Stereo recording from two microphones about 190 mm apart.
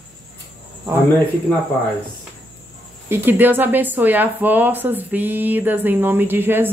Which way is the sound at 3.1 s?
10° right (ahead or behind).